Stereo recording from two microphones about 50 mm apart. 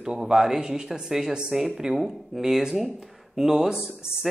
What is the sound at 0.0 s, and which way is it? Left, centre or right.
A man's voice, centre.